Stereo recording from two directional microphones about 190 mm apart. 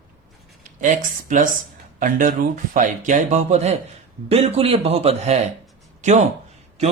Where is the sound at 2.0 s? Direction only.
45° right (ahead or behind).